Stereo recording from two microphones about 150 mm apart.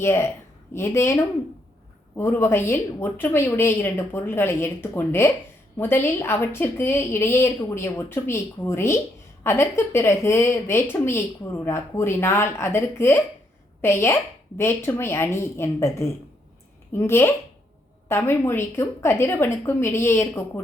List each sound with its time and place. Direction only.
0.0 s a woman's voice: 20° left (ahead or behind)